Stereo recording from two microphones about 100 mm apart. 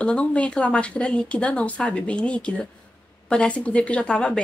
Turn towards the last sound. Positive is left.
turn(degrees=10)  # may be behind; listen again after turning